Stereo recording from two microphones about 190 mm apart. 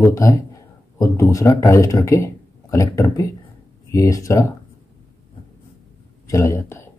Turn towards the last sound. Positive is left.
turn(degrees=15)  # may be behind; listen again after turning